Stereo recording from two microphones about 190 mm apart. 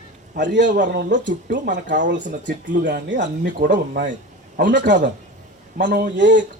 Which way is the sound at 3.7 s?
60° right (ahead or behind).